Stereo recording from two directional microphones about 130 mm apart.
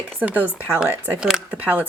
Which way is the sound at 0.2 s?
10° right (ahead or behind).